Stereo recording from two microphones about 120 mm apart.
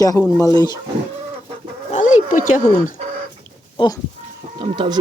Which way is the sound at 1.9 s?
90° left.